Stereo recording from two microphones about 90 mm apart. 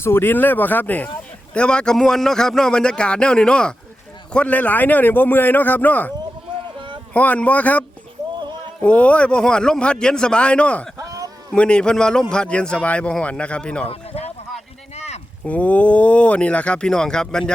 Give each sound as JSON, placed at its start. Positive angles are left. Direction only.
{"t": 0.0, "sound": "a man's voice", "side_deg": 25}
{"t": 6.7, "sound": "boat", "side_deg": -65}
{"t": 7.1, "sound": "a man's voice", "side_deg": 15}
{"t": 10.9, "sound": "a sound", "side_deg": -40}
{"t": 11.5, "sound": "a man's voice", "side_deg": 10}
{"t": 15.4, "sound": "a man's voice", "side_deg": 15}